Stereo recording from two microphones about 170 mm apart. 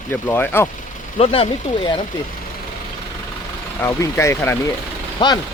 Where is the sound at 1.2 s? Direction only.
35° left (ahead or behind).